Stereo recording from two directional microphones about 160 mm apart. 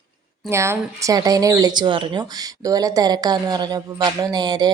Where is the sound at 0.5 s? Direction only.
15° right (ahead or behind).